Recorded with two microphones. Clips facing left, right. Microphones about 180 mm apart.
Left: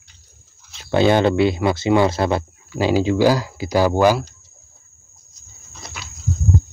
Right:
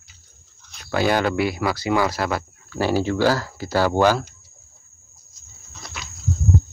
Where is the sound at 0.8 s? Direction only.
25° left (ahead or behind).